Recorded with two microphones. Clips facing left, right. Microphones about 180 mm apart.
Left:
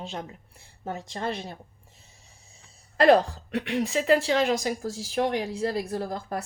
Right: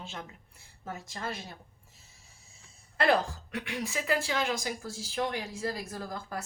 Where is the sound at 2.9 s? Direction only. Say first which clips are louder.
Left 8 dB; 35° left (ahead or behind).